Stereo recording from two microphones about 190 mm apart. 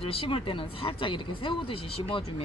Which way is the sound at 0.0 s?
30° left (ahead or behind).